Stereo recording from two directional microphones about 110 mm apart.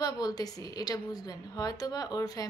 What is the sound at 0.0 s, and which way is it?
A woman's voice, 35° left (ahead or behind).